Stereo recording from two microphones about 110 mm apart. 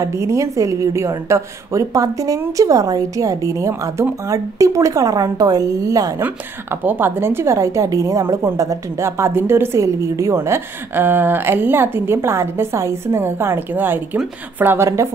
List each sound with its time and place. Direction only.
0.0 s a woman's voice: 25° right (ahead or behind)
6.2 s a woman's voice: 15° right (ahead or behind)